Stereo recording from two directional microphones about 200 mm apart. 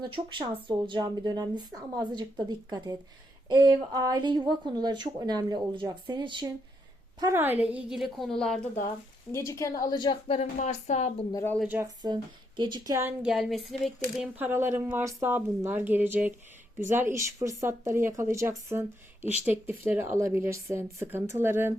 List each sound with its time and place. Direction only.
0.0 s a woman's voice: 25° right (ahead or behind); by 8.6 s centre (ahead or behind)
9.3 s a woman's voice: 15° left (ahead or behind); by 11.3 s 35° left (ahead or behind)
11.3 s speech: 15° left (ahead or behind)
11.5 s a woman's voice: centre (ahead or behind)
11.8 s speech: 20° right (ahead or behind)